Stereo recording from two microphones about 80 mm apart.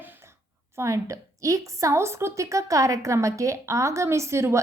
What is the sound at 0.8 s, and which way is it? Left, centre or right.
A woman's voice, right.